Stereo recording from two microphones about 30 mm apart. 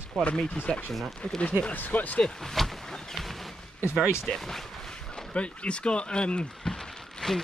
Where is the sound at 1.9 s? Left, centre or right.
Left.